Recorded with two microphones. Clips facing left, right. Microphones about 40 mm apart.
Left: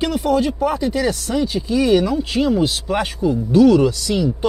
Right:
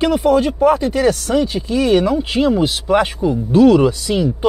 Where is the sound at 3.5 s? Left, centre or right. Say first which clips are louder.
Right 2 dB; right.